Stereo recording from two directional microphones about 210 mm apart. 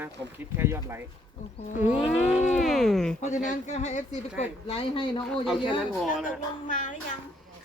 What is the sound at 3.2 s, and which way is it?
A woman's voice, 35° left (ahead or behind).